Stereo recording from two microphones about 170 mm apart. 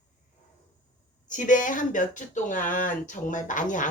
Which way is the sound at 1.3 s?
50° left (ahead or behind).